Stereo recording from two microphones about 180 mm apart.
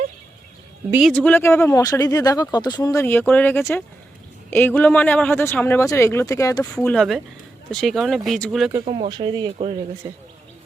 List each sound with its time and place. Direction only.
1.0 s speech: 5° left (ahead or behind)
6.7 s speech: 5° left (ahead or behind)
8.8 s speech: 30° right (ahead or behind)